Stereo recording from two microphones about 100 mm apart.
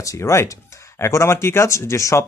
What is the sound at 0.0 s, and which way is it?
Speech, 30° left (ahead or behind).